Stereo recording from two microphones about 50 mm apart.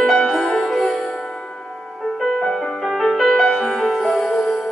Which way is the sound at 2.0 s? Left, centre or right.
Centre.